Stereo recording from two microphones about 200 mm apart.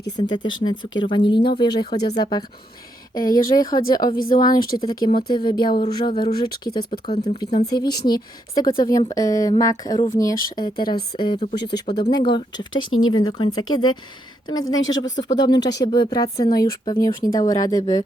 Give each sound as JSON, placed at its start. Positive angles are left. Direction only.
{"t": 0.2, "sound": "speech", "side_deg": 20}
{"t": 7.6, "sound": "speech", "side_deg": 20}
{"t": 12.8, "sound": "speech", "side_deg": 90}
{"t": 13.1, "sound": "speech", "side_deg": 20}
{"t": 14.8, "sound": "speech", "side_deg": 75}
{"t": 15.0, "sound": "speech", "side_deg": 20}